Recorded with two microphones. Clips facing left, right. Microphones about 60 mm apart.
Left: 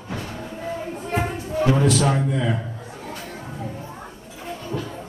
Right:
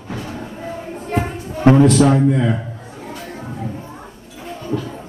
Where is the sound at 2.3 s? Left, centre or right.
Right.